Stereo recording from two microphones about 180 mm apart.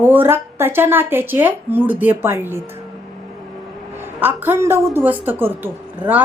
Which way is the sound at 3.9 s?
10° right (ahead or behind).